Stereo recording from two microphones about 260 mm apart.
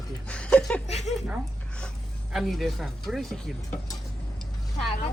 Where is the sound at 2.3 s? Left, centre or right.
Centre.